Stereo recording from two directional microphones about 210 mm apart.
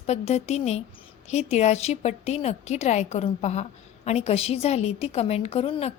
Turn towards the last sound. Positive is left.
turn(degrees=25)  # may be behind; listen again after turning